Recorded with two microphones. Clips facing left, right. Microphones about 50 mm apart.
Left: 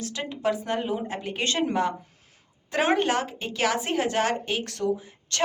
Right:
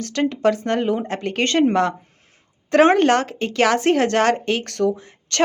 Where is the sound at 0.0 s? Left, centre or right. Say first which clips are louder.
Right 9 dB; right.